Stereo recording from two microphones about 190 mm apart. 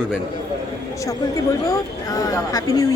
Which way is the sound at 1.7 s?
20° left (ahead or behind).